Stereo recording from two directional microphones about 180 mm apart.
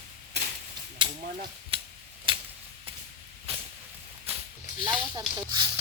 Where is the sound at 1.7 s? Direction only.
30° right (ahead or behind).